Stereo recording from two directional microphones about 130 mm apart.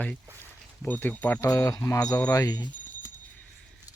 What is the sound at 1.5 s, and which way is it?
Speech, 25° left (ahead or behind).